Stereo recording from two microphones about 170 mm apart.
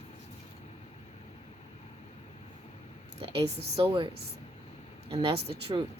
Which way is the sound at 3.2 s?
35° right (ahead or behind).